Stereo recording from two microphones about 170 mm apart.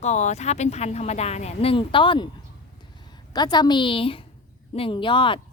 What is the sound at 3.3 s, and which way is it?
A woman's voice, 25° left (ahead or behind).